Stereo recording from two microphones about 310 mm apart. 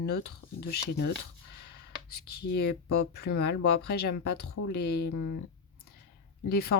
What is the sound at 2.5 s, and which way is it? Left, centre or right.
Speech, left.